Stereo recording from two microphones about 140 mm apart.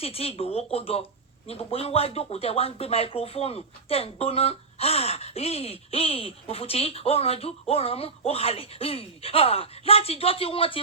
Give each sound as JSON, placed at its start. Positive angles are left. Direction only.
{"t": 0.0, "sound": "speech", "side_deg": 45}